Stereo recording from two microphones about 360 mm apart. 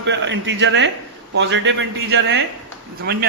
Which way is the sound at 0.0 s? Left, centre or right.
Right.